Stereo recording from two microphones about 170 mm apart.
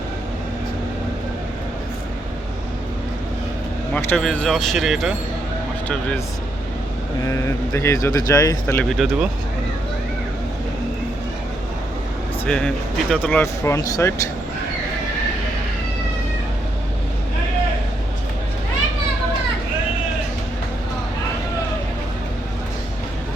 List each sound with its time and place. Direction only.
3.9 s speech: 5° left (ahead or behind)
7.3 s speech: 15° left (ahead or behind)
8.6 s speech: 5° left (ahead or behind)
12.5 s speech: 5° left (ahead or behind)
13.4 s speech: 15° left (ahead or behind)